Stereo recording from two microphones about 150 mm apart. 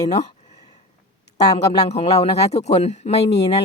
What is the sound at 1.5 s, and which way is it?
Speech, 45° left (ahead or behind).